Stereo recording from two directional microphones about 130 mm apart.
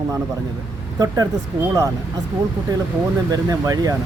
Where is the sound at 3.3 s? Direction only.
25° right (ahead or behind).